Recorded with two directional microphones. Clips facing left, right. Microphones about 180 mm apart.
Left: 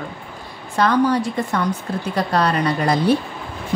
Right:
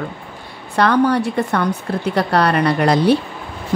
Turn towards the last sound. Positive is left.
turn(degrees=-70)  # may be behind; listen again after turning